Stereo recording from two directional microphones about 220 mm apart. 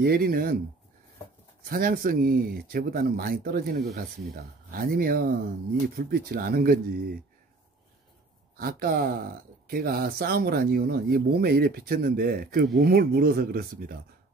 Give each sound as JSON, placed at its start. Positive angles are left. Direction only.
{"t": 0.0, "sound": "speech", "side_deg": -45}
{"t": 1.7, "sound": "speech", "side_deg": -40}
{"t": 8.5, "sound": "speech", "side_deg": -40}